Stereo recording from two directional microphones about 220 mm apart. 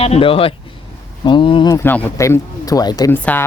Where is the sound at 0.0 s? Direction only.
25° left (ahead or behind).